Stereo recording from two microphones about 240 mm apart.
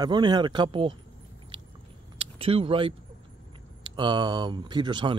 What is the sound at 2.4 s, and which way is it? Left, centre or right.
Speech, right.